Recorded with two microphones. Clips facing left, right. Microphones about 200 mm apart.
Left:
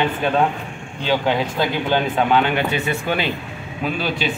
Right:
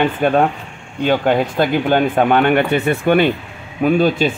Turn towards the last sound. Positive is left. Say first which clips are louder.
# right 9 dB
turn(degrees=-50)  # may be behind; listen again after turning